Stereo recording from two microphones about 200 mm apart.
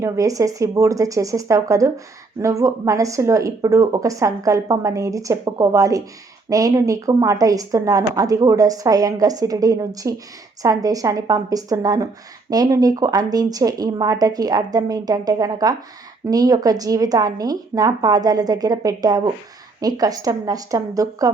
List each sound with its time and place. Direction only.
0.0 s a woman's voice: 15° right (ahead or behind)